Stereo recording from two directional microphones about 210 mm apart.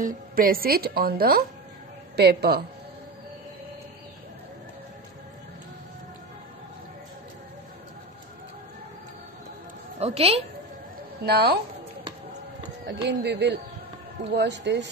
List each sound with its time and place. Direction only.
0.0 s speech: 45° right (ahead or behind)
9.9 s a woman's voice: 30° right (ahead or behind)
11.2 s speech: 50° right (ahead or behind)
12.8 s speech: 55° right (ahead or behind)